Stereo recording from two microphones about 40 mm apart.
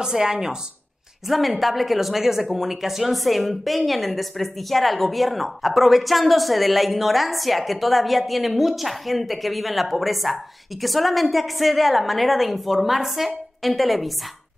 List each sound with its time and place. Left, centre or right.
0.0 s speech: centre
1.2 s speech: centre